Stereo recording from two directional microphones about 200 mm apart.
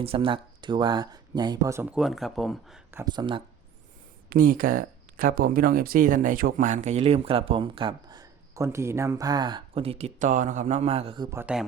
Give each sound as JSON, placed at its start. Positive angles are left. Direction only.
{"t": 0.0, "sound": "speech", "side_deg": -25}
{"t": 3.0, "sound": "speech", "side_deg": -20}
{"t": 4.3, "sound": "speech", "side_deg": -45}
{"t": 11.3, "sound": "speech", "side_deg": -10}